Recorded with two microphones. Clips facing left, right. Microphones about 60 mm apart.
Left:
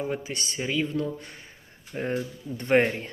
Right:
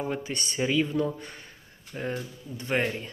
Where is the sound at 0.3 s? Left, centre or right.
Centre.